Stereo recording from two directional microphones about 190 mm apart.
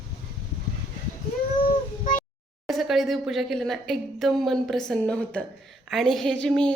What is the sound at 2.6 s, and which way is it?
A woman's voice, centre (ahead or behind).